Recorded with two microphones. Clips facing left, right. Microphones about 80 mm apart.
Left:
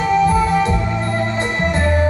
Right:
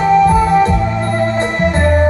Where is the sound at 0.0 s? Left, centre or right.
Right.